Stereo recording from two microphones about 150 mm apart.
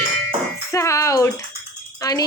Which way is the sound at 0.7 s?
20° left (ahead or behind).